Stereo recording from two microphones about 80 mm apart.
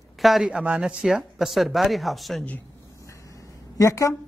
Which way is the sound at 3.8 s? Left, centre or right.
Left.